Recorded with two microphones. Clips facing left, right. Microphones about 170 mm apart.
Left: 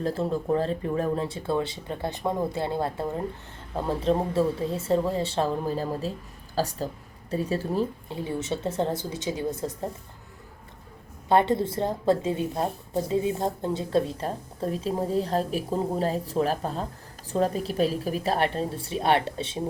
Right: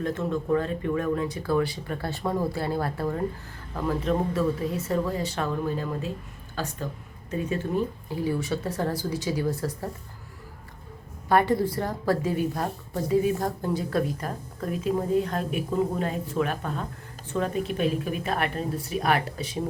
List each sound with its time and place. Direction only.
0.0 s speech: 35° left (ahead or behind)
11.3 s speech: 25° left (ahead or behind)